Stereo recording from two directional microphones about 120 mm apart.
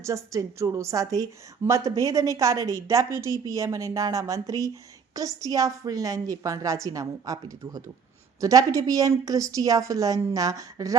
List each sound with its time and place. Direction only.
0.0 s a woman's voice: 25° right (ahead or behind)